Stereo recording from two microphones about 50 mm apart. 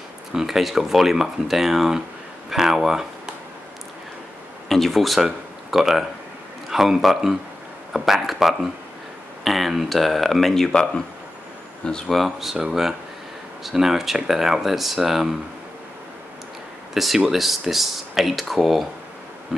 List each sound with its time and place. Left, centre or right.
0.3 s speech: centre
4.6 s speech: centre
10.8 s speech: centre
12.1 s speech: centre
16.9 s speech: centre